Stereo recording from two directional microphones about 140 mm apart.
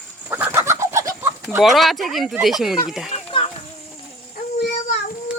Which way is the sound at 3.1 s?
40° left (ahead or behind).